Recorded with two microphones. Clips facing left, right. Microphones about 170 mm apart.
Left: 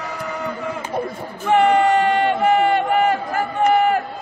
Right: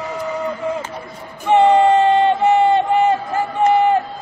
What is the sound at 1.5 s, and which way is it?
Crowd, 25° right (ahead or behind).